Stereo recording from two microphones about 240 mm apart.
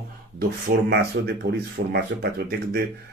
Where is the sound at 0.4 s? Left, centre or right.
Right.